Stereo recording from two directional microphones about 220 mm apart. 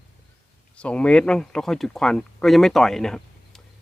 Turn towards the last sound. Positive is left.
turn(degrees=0)  # may be behind; listen again after turning